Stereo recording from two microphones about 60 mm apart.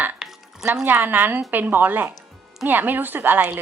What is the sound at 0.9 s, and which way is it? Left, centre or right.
Speech, right.